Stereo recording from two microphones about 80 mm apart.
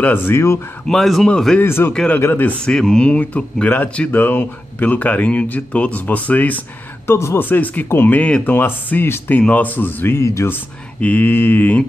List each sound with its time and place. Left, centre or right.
0.0 s speech: left
0.8 s speech: centre
1.6 s speech: left
2.6 s speech: centre
7.1 s speech: left
10.5 s speech: centre